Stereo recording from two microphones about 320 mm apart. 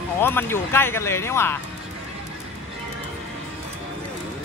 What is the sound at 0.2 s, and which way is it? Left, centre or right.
Speech, centre.